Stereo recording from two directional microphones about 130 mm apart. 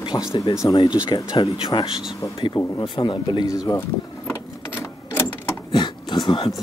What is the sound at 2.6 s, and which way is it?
Speech, 30° left (ahead or behind).